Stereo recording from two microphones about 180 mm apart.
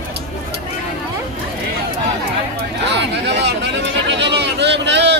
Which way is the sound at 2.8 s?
75° right (ahead or behind).